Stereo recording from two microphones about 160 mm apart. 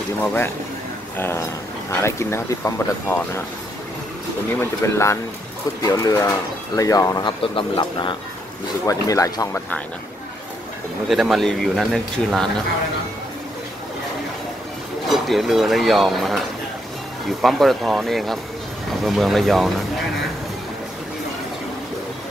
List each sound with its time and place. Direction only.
0.2 s speech: 10° left (ahead or behind)
4.6 s speech: 15° left (ahead or behind)
8.8 s speech: 20° left (ahead or behind)
11.1 s speech: centre (ahead or behind)
15.0 s speech: centre (ahead or behind)